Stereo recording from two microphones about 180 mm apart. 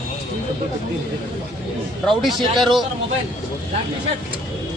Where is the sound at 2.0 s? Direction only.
Centre (ahead or behind).